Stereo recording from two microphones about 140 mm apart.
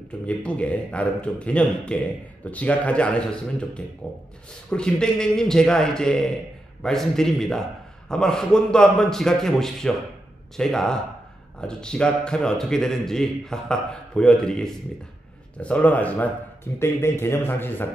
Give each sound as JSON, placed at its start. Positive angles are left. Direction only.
{"t": 0.3, "sound": "a man's voice", "side_deg": 10}